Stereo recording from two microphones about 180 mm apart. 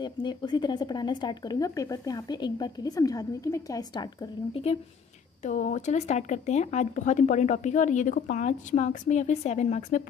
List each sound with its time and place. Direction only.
0.0 s speech: 25° left (ahead or behind)
5.4 s speech: 45° left (ahead or behind)